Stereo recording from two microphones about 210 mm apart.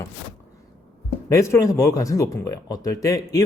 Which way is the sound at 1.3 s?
15° left (ahead or behind).